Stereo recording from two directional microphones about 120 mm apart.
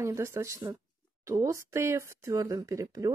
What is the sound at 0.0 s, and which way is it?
Speech, 25° right (ahead or behind).